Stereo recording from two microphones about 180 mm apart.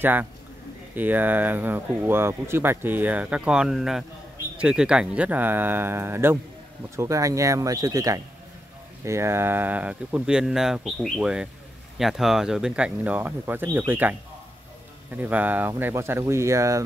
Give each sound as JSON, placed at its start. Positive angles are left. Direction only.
{"t": 0.0, "sound": "speech", "side_deg": -10}